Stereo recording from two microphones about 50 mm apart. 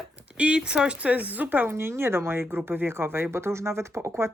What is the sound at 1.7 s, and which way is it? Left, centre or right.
Speech, right.